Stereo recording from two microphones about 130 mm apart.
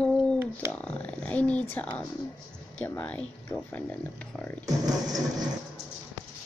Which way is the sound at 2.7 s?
15° left (ahead or behind).